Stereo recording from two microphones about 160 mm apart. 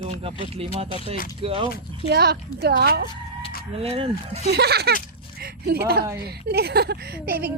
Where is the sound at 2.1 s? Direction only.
90° right.